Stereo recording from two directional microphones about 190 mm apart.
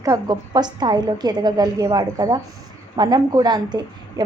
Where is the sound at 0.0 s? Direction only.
20° right (ahead or behind).